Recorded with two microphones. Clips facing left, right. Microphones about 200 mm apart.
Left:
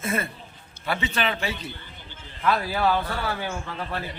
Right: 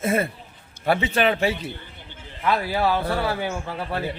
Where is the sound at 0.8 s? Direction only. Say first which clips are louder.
Right 6 dB; 50° right (ahead or behind).